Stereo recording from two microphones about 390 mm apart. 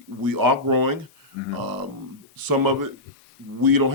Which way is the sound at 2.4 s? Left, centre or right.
Right.